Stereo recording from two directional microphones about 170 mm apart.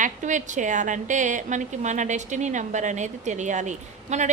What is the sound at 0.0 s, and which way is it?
A woman's voice, 45° right (ahead or behind).